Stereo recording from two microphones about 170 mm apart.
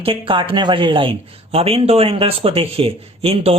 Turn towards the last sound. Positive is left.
turn(degrees=-35)  # may be behind; listen again after turning